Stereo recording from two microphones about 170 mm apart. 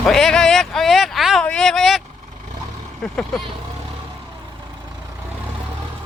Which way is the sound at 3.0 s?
5° left (ahead or behind).